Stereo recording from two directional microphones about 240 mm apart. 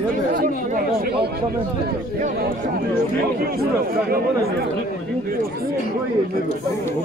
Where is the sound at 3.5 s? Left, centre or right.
Right.